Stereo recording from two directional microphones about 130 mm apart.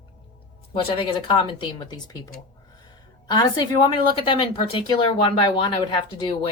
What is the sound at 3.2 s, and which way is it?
A woman's voice, 35° left (ahead or behind).